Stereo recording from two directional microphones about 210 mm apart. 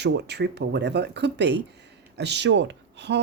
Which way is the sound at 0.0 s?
55° right (ahead or behind).